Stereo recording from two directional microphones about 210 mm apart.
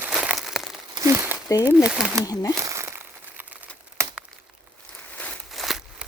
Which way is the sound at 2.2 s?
20° left (ahead or behind).